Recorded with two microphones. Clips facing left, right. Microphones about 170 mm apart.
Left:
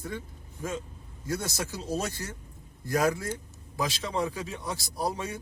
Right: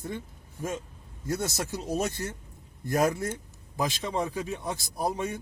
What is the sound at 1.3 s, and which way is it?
Speech, 20° right (ahead or behind).